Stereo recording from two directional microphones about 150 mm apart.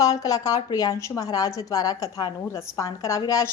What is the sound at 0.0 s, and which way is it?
A woman's voice, 25° left (ahead or behind).